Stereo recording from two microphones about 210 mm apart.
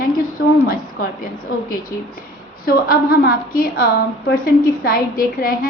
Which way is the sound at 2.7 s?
45° left (ahead or behind).